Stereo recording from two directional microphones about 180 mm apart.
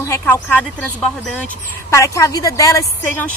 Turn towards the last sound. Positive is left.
turn(degrees=15)  # may be behind; listen again after turning